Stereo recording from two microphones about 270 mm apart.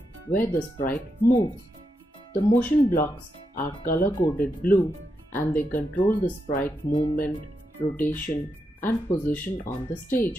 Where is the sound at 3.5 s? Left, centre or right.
Centre.